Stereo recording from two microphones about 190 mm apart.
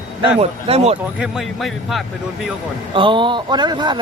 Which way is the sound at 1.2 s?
Centre (ahead or behind).